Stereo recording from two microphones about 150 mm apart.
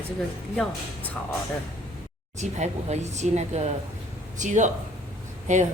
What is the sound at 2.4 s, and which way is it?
A woman's voice, 50° right (ahead or behind).